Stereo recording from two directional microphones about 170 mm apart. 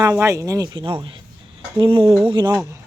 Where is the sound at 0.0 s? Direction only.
20° right (ahead or behind).